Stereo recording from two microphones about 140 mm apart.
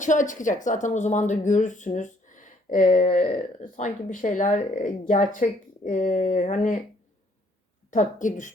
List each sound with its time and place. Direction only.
0.0 s speech: 65° left (ahead or behind)
7.9 s speech: 65° left (ahead or behind)